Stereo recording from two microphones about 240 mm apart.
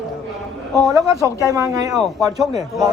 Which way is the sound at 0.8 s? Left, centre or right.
Centre.